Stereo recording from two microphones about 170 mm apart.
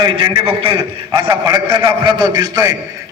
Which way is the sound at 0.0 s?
30° right (ahead or behind).